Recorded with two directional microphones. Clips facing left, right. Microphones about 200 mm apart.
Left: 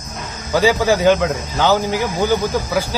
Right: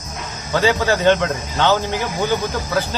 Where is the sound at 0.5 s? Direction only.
10° left (ahead or behind).